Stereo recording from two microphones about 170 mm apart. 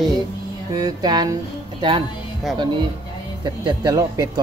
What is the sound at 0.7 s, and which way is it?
Speech, 25° right (ahead or behind).